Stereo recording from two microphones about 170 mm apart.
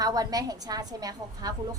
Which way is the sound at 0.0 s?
20° right (ahead or behind).